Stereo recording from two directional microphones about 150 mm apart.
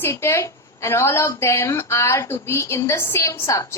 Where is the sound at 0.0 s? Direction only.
15° left (ahead or behind).